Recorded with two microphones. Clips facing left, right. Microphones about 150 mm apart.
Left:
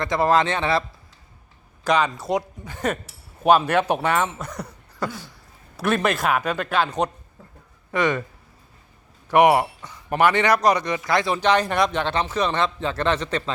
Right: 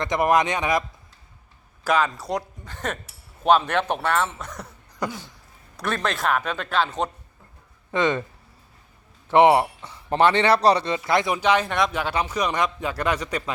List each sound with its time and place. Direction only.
0.0 s a man's voice: 20° right (ahead or behind)
1.8 s speech: 5° right (ahead or behind)
4.9 s a sound: 15° right (ahead or behind)
5.7 s speech: 5° left (ahead or behind)
7.9 s speech: 20° right (ahead or behind)
9.3 s speech: 25° right (ahead or behind)
11.3 s a man's voice: 5° right (ahead or behind)